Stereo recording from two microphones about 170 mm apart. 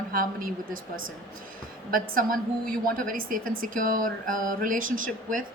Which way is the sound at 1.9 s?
55° right (ahead or behind).